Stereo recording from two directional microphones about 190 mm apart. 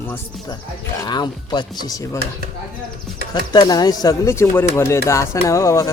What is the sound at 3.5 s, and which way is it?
Speech, 20° left (ahead or behind).